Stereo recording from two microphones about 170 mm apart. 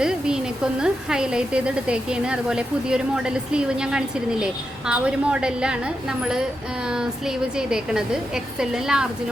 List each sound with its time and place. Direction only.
0.0 s speech: 5° right (ahead or behind)
6.9 s speech: 5° right (ahead or behind)